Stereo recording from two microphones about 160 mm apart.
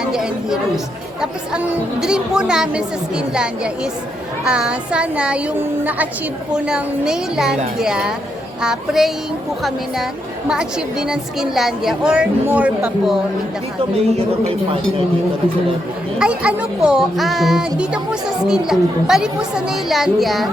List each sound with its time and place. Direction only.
0.0 s chatter: 5° right (ahead or behind)
1.2 s a woman's voice: 5° right (ahead or behind)
14.2 s speech: 40° right (ahead or behind)
16.1 s a woman's voice: 5° right (ahead or behind)